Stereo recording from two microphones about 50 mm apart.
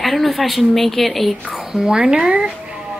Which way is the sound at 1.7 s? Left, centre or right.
Centre.